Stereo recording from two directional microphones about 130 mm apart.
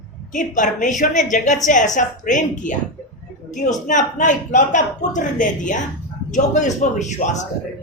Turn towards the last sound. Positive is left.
turn(degrees=65)  # may be behind; listen again after turning